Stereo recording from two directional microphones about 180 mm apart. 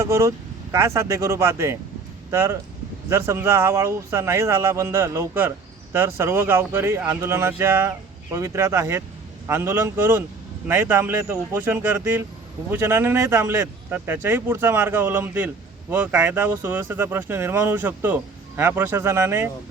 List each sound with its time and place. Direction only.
0.0 s speech: 15° right (ahead or behind)